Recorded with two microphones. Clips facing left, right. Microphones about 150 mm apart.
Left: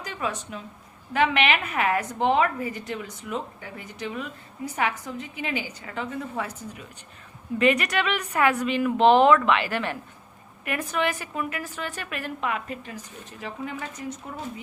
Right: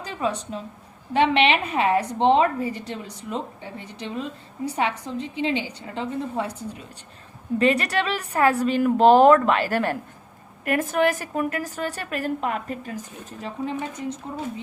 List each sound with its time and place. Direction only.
0.0 s a woman's voice: 30° right (ahead or behind)
13.4 s a woman's voice: 30° right (ahead or behind)